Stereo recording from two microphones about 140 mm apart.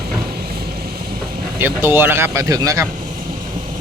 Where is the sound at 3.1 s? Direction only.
90° right.